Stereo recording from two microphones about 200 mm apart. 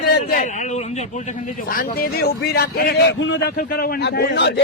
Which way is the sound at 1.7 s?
45° left (ahead or behind).